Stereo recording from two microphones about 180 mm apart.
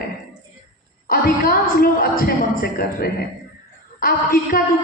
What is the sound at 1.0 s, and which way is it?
Speech, 55° left (ahead or behind).